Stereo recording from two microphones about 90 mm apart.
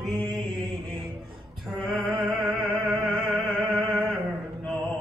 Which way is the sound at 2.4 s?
20° right (ahead or behind).